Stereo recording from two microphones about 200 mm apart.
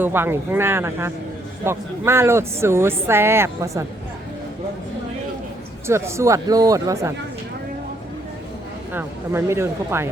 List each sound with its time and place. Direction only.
0.0 s speech: 10° right (ahead or behind)
5.9 s speech: 15° right (ahead or behind)
8.9 s speech: 10° right (ahead or behind)